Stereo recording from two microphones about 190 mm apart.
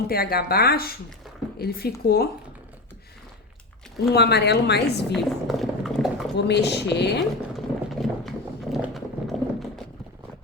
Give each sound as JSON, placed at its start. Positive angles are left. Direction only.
{"t": 0.1, "sound": "a woman's voice", "side_deg": 55}
{"t": 4.1, "sound": "a woman's voice", "side_deg": 60}
{"t": 5.1, "sound": "a sound", "side_deg": 0}
{"t": 6.3, "sound": "a woman's voice", "side_deg": 65}
{"t": 7.5, "sound": "clip-clop", "side_deg": 0}
{"t": 8.7, "sound": "horse", "side_deg": 0}